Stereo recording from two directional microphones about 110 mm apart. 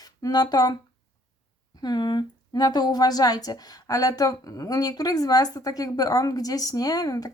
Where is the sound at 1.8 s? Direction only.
40° left (ahead or behind).